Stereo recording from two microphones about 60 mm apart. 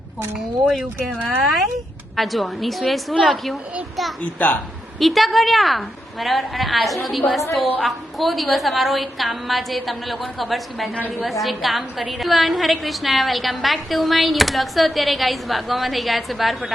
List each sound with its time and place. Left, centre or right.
1.4 s a woman's voice: centre
4.2 s a woman's voice: left
4.9 s a woman's voice: centre